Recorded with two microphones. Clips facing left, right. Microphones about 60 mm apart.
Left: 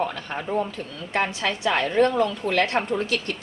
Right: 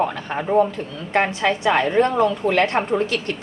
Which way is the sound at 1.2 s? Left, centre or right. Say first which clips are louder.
Right 5 dB; right.